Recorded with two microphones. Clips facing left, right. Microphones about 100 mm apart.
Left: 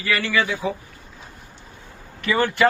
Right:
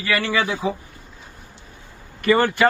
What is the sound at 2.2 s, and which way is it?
Speech, 50° right (ahead or behind).